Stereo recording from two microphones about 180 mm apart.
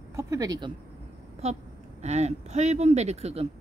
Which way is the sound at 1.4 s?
35° right (ahead or behind).